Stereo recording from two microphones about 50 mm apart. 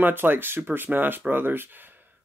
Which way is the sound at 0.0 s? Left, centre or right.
Right.